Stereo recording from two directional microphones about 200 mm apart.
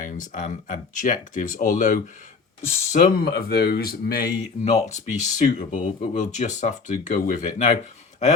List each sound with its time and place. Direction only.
0.0 s speech: 40° left (ahead or behind)
4.6 s speech: 35° left (ahead or behind)